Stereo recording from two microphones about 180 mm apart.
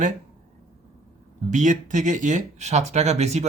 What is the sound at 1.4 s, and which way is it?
Speech, 45° right (ahead or behind).